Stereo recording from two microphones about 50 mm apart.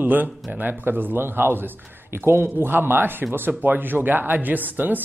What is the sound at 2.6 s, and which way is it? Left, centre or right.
Speech, right.